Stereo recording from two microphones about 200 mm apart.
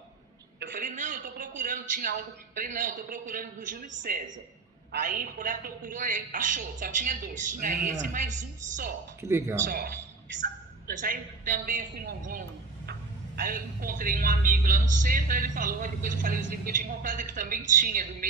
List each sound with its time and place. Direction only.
0.7 s a man's voice: 40° right (ahead or behind)
9.2 s a man's voice: 15° right (ahead or behind)
9.7 s speech: 50° right (ahead or behind)
11.0 s a man's voice: 40° right (ahead or behind)